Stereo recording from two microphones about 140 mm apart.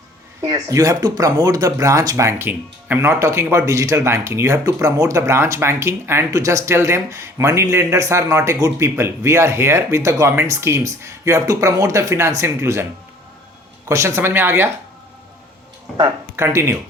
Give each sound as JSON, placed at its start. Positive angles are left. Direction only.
{"t": 0.4, "sound": "speech", "side_deg": -25}
{"t": 13.8, "sound": "speech", "side_deg": -20}
{"t": 16.3, "sound": "speech", "side_deg": -20}